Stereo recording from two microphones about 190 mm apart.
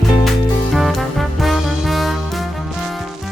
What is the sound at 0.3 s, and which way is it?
Music, centre (ahead or behind).